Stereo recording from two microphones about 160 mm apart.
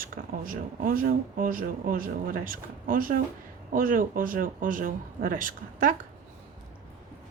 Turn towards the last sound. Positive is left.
turn(degrees=-55)  # may be behind; listen again after turning